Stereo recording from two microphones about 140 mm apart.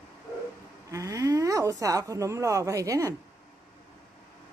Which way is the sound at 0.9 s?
25° right (ahead or behind).